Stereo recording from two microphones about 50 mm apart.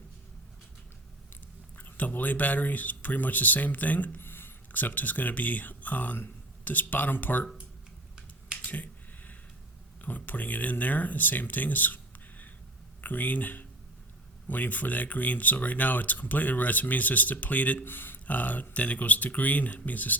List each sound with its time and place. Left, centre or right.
1.7 s speech: left
4.2 s speech: left
8.6 s finger snapping: left
10.0 s speech: left
13.0 s speech: left
17.8 s speech: left